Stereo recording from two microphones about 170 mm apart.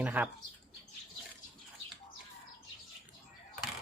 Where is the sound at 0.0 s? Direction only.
10° right (ahead or behind).